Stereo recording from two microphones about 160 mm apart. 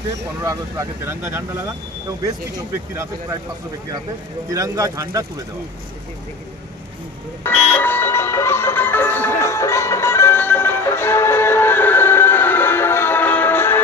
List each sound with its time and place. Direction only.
0.4 s speech: 20° right (ahead or behind)
4.5 s speech: 20° right (ahead or behind)
7.4 s music: 10° left (ahead or behind)